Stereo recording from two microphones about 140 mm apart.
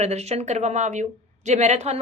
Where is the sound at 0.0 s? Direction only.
50° right (ahead or behind).